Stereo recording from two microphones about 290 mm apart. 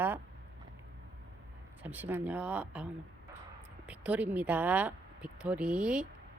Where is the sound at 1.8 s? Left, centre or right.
Centre.